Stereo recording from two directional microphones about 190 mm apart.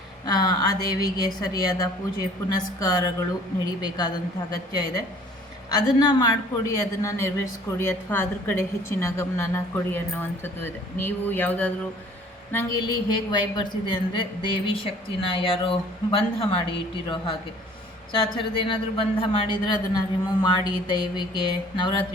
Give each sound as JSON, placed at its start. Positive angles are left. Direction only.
{"t": 0.3, "sound": "a woman's voice", "side_deg": 20}
{"t": 5.7, "sound": "a woman's voice", "side_deg": 20}